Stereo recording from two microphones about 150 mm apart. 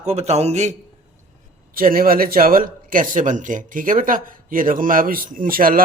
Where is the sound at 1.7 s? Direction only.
75° right (ahead or behind).